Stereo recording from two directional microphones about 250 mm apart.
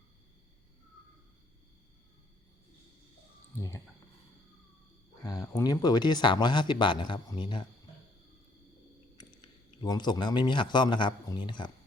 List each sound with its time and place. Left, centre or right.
3.6 s speech: centre
5.3 s speech: centre
9.1 s speech: centre